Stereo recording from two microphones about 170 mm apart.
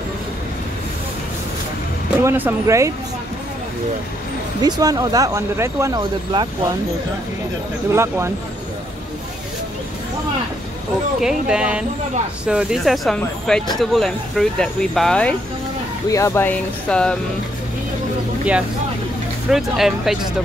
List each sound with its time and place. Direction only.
2.2 s speech: 15° right (ahead or behind)
4.6 s speech: 25° right (ahead or behind)
7.9 s speech: 15° right (ahead or behind)
11.1 s speech: 5° right (ahead or behind)
16.1 s speech: 20° left (ahead or behind)
19.5 s speech: centre (ahead or behind)